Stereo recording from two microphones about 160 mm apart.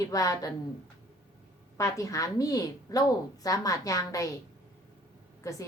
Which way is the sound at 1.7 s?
20° left (ahead or behind).